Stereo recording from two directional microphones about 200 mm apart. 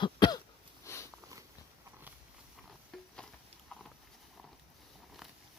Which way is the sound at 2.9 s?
Centre (ahead or behind).